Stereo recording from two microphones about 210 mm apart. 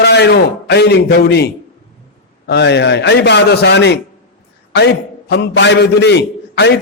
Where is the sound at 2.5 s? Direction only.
55° left (ahead or behind).